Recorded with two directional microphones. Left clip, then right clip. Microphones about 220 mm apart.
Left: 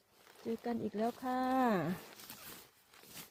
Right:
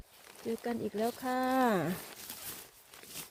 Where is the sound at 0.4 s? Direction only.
35° right (ahead or behind).